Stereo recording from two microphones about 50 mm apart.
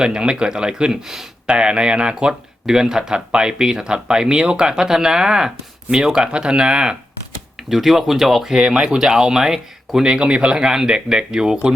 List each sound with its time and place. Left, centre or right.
0.0 s speech: centre
1.5 s speech: centre
7.7 s speech: centre
8.5 s speech: centre